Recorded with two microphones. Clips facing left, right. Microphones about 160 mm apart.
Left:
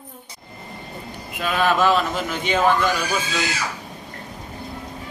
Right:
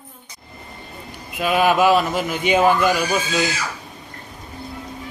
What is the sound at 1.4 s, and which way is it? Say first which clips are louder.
Speech: right 3 dB; 10° right (ahead or behind).